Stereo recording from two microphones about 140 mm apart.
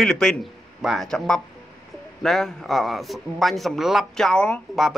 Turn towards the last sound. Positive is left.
turn(degrees=5)  # may be behind; listen again after turning